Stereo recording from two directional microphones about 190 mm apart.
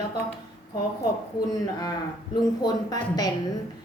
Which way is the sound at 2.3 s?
20° left (ahead or behind).